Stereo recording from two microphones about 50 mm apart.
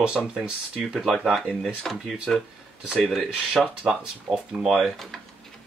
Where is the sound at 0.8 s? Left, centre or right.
Centre.